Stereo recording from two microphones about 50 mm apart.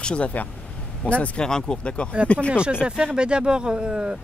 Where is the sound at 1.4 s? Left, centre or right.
Centre.